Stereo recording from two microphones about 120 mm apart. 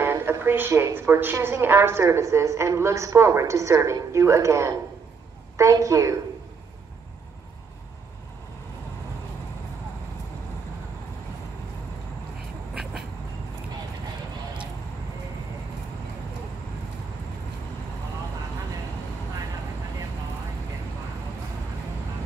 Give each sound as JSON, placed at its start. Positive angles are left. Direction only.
{"t": 0.0, "sound": "a woman's voice", "side_deg": -20}